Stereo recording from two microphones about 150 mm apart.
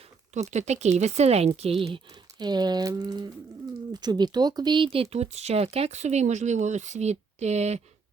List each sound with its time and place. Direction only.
0.5 s speech: 50° right (ahead or behind)
2.4 s speech: 30° right (ahead or behind); by 7.8 s 50° right (ahead or behind)